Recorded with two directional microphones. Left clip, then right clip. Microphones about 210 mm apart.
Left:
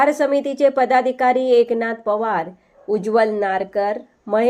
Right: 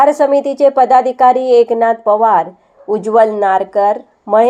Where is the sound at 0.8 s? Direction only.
50° right (ahead or behind).